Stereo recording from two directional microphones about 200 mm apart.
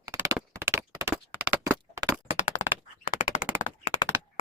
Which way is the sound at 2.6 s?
20° left (ahead or behind).